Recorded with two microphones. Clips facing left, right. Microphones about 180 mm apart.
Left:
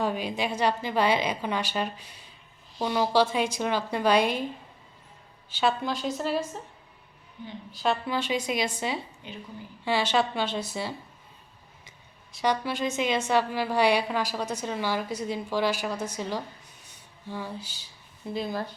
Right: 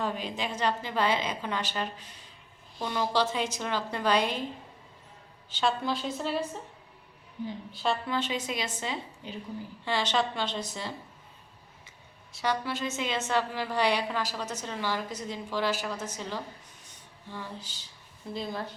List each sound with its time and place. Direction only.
0.0 s a woman's voice: 10° left (ahead or behind)
5.5 s a woman's voice: 5° left (ahead or behind)
7.7 s a woman's voice: centre (ahead or behind)
9.2 s a woman's voice: 35° right (ahead or behind)
9.8 s a woman's voice: 10° left (ahead or behind)
12.3 s a woman's voice: 15° left (ahead or behind)
16.9 s a sound: 10° left (ahead or behind)
18.3 s a woman's voice: 5° left (ahead or behind)